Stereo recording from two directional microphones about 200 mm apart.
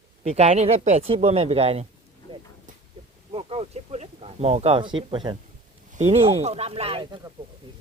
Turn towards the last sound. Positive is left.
turn(degrees=-30)  # may be behind; listen again after turning